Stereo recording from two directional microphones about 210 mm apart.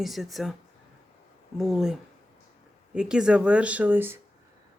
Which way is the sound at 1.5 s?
Centre (ahead or behind).